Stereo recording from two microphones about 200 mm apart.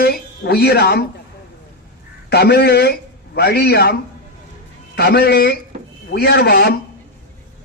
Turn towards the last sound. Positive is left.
turn(degrees=50)  # may be behind; listen again after turning